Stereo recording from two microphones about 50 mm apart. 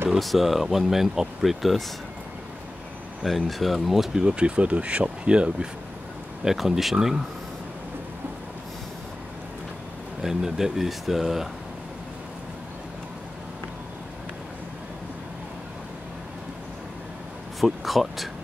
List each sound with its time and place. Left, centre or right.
0.1 s speech: centre
3.3 s speech: centre
4.2 s speech: centre
6.4 s speech: centre
10.2 s speech: centre
17.6 s speech: centre